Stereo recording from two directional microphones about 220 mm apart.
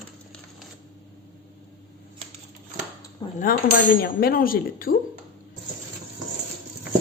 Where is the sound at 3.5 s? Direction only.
40° left (ahead or behind).